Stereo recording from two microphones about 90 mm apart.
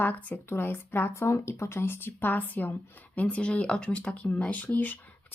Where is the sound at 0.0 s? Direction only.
20° left (ahead or behind).